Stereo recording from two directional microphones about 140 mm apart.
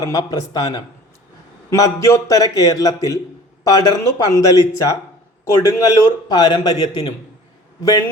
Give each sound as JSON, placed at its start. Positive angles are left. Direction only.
{"t": 0.0, "sound": "a man's voice", "side_deg": 25}